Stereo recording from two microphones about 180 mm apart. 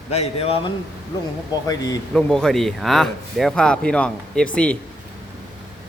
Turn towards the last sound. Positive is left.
turn(degrees=5)  # may be behind; listen again after turning